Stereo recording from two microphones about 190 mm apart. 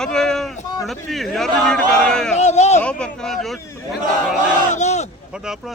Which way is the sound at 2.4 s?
35° left (ahead or behind).